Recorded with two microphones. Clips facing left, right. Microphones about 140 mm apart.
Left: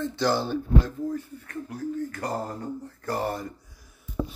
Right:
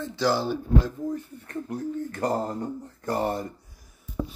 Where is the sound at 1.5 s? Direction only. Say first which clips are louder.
Right 2 dB; 25° right (ahead or behind).